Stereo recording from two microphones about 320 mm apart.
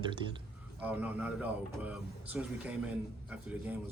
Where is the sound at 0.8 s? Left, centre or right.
Centre.